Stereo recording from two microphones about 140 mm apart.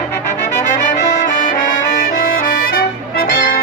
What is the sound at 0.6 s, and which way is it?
Brass instrument, 60° left (ahead or behind).